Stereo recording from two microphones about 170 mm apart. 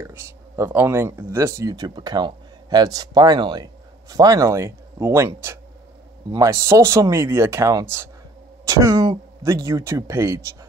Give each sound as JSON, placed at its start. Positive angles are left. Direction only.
{"t": 0.0, "sound": "speech", "side_deg": -15}